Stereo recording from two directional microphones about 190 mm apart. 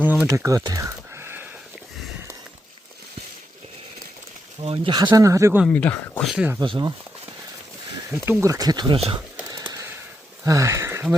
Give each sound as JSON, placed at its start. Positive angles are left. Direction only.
{"t": 0.0, "sound": "a sound", "side_deg": -10}
{"t": 4.6, "sound": "speech", "side_deg": -30}
{"t": 5.6, "sound": "speech", "side_deg": 10}
{"t": 6.3, "sound": "speech", "side_deg": -5}
{"t": 6.6, "sound": "speech", "side_deg": -25}
{"t": 8.1, "sound": "speech", "side_deg": -15}
{"t": 9.5, "sound": "a sound", "side_deg": -20}
{"t": 10.4, "sound": "sniff", "side_deg": -15}